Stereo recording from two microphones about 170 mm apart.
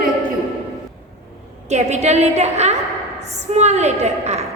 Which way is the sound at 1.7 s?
40° right (ahead or behind).